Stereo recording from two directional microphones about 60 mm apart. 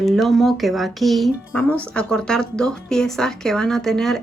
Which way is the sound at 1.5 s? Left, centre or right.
Left.